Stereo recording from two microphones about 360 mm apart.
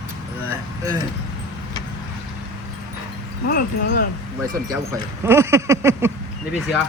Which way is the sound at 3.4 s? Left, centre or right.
Left.